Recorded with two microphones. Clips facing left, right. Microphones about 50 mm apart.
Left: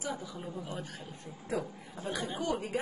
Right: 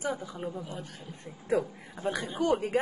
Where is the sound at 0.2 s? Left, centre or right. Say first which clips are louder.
Right 4 dB; right.